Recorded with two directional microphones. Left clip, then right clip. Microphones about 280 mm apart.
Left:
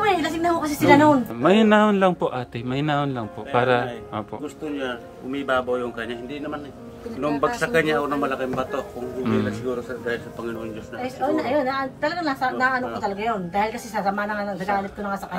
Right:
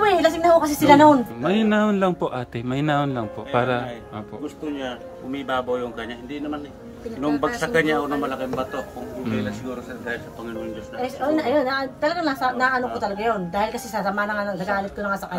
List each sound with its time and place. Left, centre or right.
0.0 s music: centre
1.4 s a man's voice: centre
7.2 s speech: centre
11.0 s a woman's voice: centre